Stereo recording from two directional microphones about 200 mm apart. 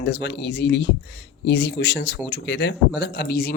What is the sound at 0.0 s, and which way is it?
Speech, 60° left (ahead or behind).